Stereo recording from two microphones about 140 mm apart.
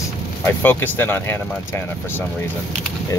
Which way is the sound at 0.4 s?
15° left (ahead or behind).